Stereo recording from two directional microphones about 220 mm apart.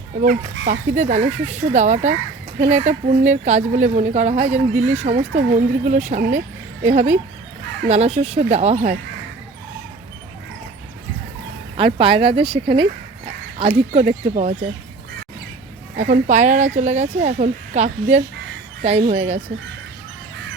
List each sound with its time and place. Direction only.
0.7 s a woman's voice: 35° right (ahead or behind)
11.8 s speech: 25° right (ahead or behind)
16.0 s a woman's voice: 35° right (ahead or behind)